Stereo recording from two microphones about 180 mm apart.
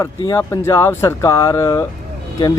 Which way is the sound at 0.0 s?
15° left (ahead or behind).